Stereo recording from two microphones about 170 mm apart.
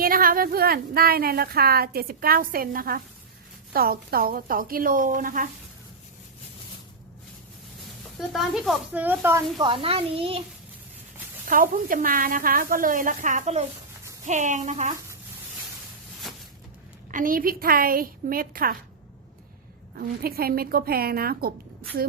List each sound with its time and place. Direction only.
0.0 s speech: 60° right (ahead or behind)
8.3 s speech: centre (ahead or behind)
9.6 s a child's voice: 30° right (ahead or behind)
11.4 s speech: 55° right (ahead or behind)
16.3 s a sound: centre (ahead or behind)
17.1 s speech: 55° right (ahead or behind)
20.0 s speech: 60° right (ahead or behind)